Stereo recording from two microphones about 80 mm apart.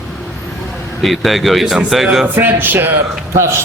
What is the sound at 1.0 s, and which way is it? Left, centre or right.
Speech, centre.